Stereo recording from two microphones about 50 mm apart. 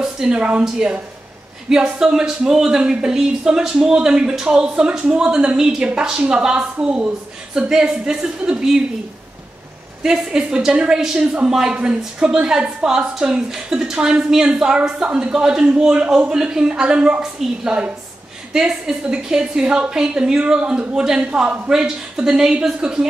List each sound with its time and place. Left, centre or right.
0.0 s a woman's voice: centre
10.0 s a woman's voice: centre
17.2 s a woman's voice: centre